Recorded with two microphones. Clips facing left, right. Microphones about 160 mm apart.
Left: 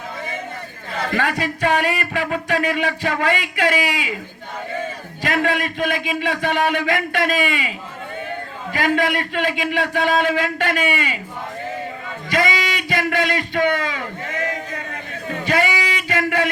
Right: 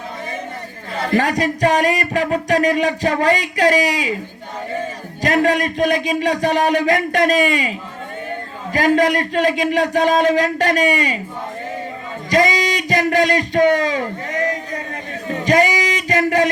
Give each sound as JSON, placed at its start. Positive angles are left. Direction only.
{"t": 0.9, "sound": "speech", "side_deg": -35}
{"t": 5.2, "sound": "speech", "side_deg": -40}
{"t": 8.7, "sound": "speech", "side_deg": -40}
{"t": 12.3, "sound": "a sound", "side_deg": -40}
{"t": 15.3, "sound": "music", "side_deg": -40}